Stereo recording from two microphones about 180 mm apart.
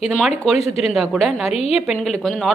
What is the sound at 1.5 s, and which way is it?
Speech, 35° left (ahead or behind).